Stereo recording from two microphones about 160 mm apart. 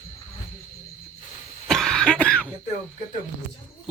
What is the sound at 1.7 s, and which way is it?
Cough, 5° left (ahead or behind).